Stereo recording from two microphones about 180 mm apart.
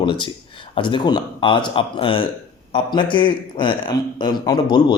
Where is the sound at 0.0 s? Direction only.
25° left (ahead or behind).